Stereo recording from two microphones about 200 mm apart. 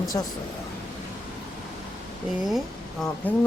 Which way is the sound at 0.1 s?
15° left (ahead or behind).